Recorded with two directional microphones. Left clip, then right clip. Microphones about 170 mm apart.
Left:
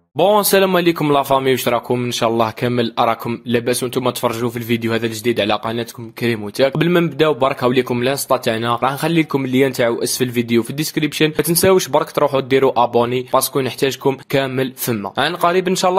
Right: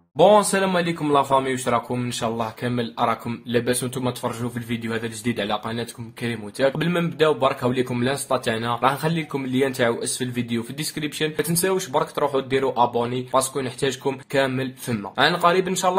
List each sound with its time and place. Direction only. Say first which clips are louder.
0.3 s speech: left 4 dB; 55° left (ahead or behind)